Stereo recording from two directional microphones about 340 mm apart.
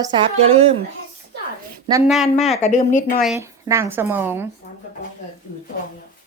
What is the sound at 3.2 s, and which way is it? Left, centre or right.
A woman's voice, centre.